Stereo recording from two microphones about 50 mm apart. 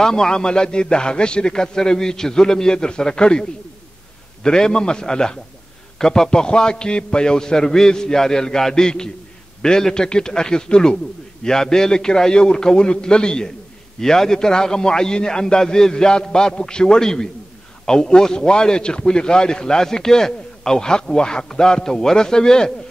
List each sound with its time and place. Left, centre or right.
0.0 s a man's voice: centre